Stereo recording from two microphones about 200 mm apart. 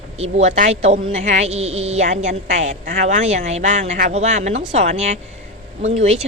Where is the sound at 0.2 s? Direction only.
35° right (ahead or behind).